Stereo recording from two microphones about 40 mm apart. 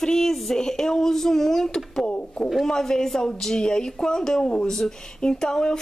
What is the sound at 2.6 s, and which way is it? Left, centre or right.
A woman's voice, centre.